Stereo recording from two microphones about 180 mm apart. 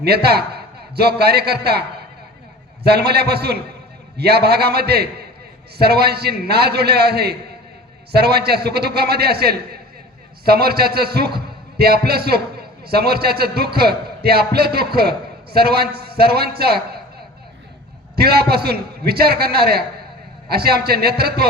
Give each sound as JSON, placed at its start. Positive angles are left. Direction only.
{"t": 0.0, "sound": "a man's voice", "side_deg": -60}
{"t": 2.8, "sound": "a man's voice", "side_deg": -65}
{"t": 18.2, "sound": "a man's voice", "side_deg": -60}